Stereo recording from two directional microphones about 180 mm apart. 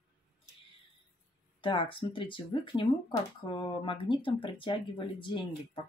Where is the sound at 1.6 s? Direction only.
25° left (ahead or behind).